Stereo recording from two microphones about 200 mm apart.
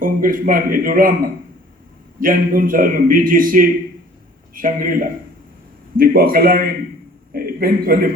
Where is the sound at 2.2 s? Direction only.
45° right (ahead or behind).